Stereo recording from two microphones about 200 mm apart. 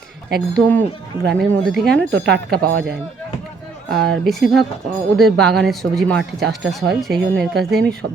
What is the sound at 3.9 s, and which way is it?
Speech, 55° right (ahead or behind).